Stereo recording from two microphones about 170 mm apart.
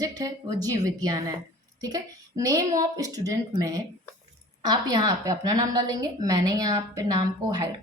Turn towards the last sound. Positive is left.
turn(degrees=-25)  # may be behind; listen again after turning